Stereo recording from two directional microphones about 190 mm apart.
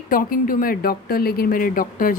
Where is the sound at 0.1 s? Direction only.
50° left (ahead or behind).